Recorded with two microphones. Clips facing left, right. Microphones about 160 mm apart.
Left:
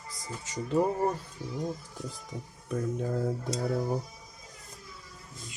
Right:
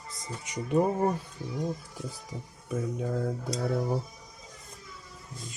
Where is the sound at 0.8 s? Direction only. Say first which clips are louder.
Right 1 dB; 5° right (ahead or behind).